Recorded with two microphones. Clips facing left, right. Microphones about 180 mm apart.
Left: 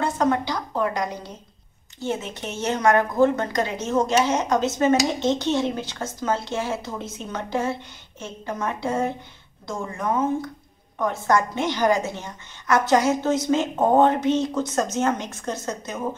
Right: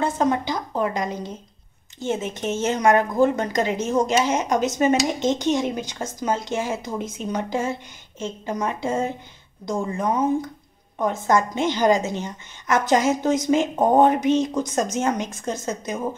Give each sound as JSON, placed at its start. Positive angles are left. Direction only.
{"t": 0.0, "sound": "a woman's voice", "side_deg": -20}